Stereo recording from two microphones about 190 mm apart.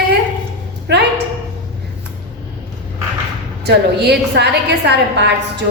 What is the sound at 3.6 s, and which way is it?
A woman's voice, 60° right (ahead or behind).